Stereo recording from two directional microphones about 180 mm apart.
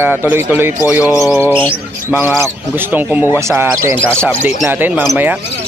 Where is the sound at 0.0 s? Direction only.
10° right (ahead or behind).